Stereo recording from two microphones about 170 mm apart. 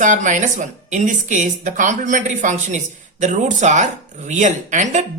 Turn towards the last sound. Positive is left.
turn(degrees=-45)  # may be behind; listen again after turning